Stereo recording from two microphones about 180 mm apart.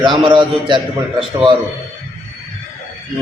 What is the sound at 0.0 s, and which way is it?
Speech, 25° right (ahead or behind).